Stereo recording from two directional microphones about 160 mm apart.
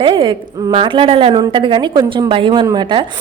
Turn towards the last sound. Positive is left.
turn(degrees=-30)  # may be behind; listen again after turning